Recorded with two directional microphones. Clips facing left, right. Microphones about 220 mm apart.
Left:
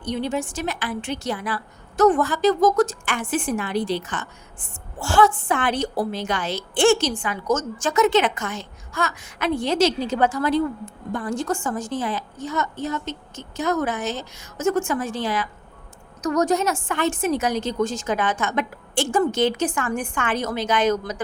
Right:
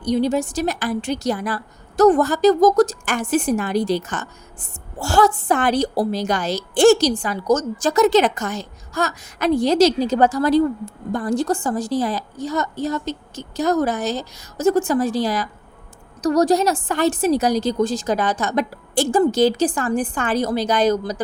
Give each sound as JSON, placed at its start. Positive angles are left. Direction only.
{"t": 0.0, "sound": "a woman's voice", "side_deg": -40}